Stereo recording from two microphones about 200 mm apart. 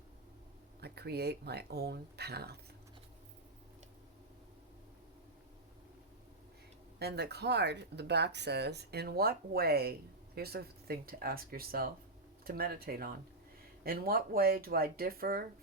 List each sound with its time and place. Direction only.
0.8 s speech: 55° right (ahead or behind)
7.0 s speech: 55° right (ahead or behind)